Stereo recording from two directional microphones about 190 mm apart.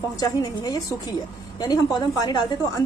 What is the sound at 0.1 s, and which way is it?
A woman's voice, 20° left (ahead or behind).